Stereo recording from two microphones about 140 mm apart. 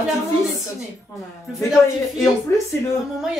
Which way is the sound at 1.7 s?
Centre (ahead or behind).